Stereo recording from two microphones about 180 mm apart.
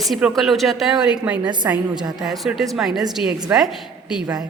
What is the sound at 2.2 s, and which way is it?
A woman's voice, centre (ahead or behind).